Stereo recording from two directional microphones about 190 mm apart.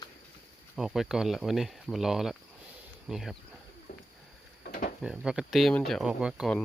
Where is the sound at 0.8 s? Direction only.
5° right (ahead or behind).